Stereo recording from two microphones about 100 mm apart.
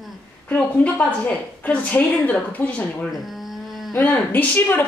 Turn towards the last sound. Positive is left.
turn(degrees=20)  # may be behind; listen again after turning